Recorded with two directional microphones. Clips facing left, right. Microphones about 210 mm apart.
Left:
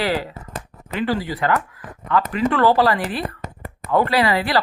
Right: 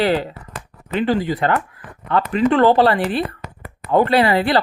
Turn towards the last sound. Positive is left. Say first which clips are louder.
# right 3 dB
turn(degrees=-25)  # may be behind; listen again after turning